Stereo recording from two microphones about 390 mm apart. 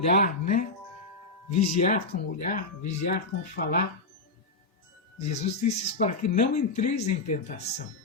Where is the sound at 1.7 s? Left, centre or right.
Centre.